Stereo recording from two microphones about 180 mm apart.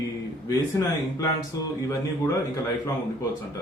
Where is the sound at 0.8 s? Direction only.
20° left (ahead or behind).